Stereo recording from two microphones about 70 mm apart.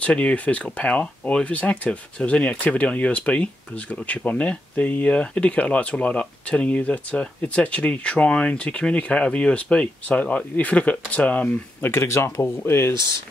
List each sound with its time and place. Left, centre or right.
0.0 s speech: centre; by 12.9 s left